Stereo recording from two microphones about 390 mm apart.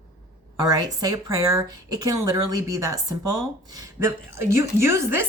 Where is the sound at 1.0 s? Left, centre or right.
Centre.